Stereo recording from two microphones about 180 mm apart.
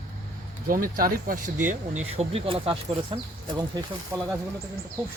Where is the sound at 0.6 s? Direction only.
50° right (ahead or behind); by 4.3 s 15° right (ahead or behind).